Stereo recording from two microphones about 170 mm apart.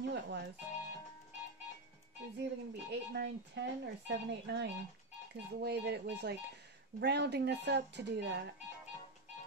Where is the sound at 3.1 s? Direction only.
90° right.